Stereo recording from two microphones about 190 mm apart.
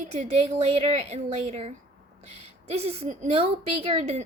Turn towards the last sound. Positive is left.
turn(degrees=-35)  # may be behind; listen again after turning